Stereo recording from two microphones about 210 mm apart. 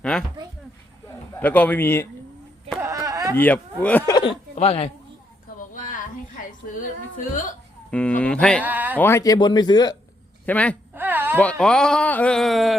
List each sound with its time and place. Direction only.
0.0 s a sound: 5° left (ahead or behind)
1.0 s a man's voice: 10° left (ahead or behind)
2.8 s a sound: 15° right (ahead or behind)
3.3 s speech: 10° left (ahead or behind)
4.1 s speech: 20° left (ahead or behind)
7.9 s speech: 5° left (ahead or behind)
8.6 s speech: 10° right (ahead or behind)
9.0 s a man's voice: 10° left (ahead or behind)
10.4 s speech: 5° left (ahead or behind)
10.9 s a sound: 10° right (ahead or behind)
11.3 s speech: 5° left (ahead or behind)